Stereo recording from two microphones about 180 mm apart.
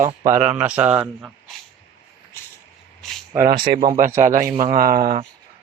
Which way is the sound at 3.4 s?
55° right (ahead or behind).